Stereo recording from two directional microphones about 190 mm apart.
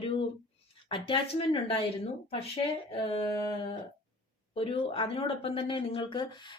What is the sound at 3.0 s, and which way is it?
Speech, 25° left (ahead or behind).